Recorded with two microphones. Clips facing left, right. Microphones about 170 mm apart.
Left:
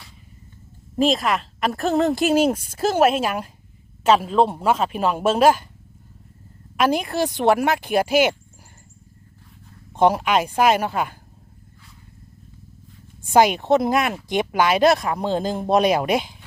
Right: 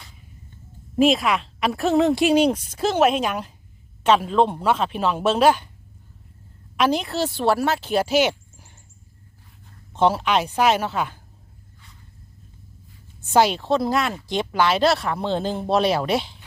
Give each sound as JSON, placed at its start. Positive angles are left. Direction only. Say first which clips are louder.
{"t": 0.9, "sound": "speech", "louder": "right 1 dB", "side_deg": 0}
{"t": 6.7, "sound": "speech", "louder": "left 1 dB", "side_deg": 10}
{"t": 9.9, "sound": "speech", "louder": "left 2 dB", "side_deg": 10}
{"t": 13.2, "sound": "speech", "louder": "left 2 dB", "side_deg": 15}